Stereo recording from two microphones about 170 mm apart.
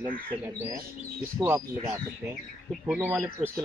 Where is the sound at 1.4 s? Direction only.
25° right (ahead or behind).